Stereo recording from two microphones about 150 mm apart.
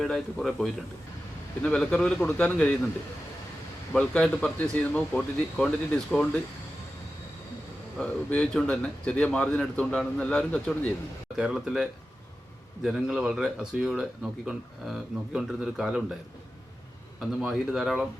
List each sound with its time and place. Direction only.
0.0 s speech: centre (ahead or behind)
3.9 s speech: 10° left (ahead or behind)
7.9 s speech: 5° left (ahead or behind)
11.3 s speech: 5° right (ahead or behind)
17.2 s speech: centre (ahead or behind)